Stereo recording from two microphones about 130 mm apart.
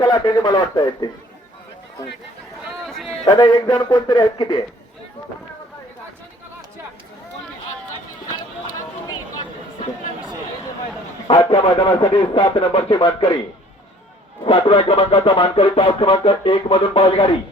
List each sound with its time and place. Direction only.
0.0 s speech: 30° left (ahead or behind)
2.8 s a sound: centre (ahead or behind)
3.2 s speech: 35° left (ahead or behind)
11.3 s speech: 35° left (ahead or behind)
14.4 s speech: 50° left (ahead or behind)